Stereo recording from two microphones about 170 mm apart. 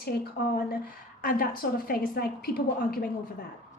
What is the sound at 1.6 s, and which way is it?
Speech, 60° left (ahead or behind).